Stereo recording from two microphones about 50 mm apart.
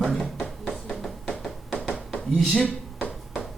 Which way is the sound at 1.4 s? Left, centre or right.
Centre.